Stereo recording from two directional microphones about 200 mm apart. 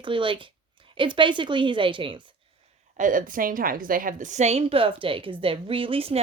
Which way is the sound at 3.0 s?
40° right (ahead or behind).